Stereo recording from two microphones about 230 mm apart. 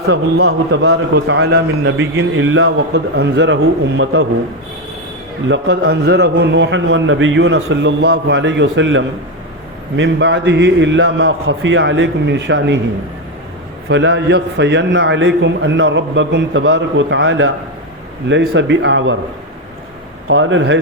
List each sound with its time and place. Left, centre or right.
0.1 s a man's voice: right
0.7 s a man's voice: right
5.5 s a man's voice: right
13.8 s a man's voice: right
20.2 s speech: right